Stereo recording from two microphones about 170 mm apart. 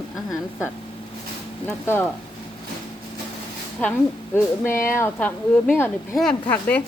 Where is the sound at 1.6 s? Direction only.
10° left (ahead or behind).